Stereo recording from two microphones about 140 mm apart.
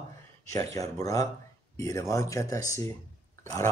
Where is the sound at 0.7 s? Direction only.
25° left (ahead or behind).